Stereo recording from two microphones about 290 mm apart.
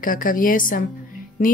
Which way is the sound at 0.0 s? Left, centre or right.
Left.